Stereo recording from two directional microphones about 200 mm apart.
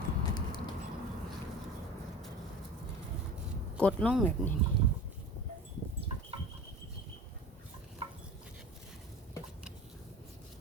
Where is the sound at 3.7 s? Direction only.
5° left (ahead or behind).